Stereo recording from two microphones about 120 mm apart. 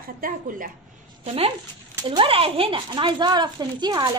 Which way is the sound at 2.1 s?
50° right (ahead or behind).